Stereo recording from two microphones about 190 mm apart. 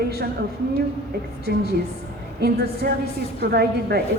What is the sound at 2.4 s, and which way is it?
A woman's voice, 55° right (ahead or behind).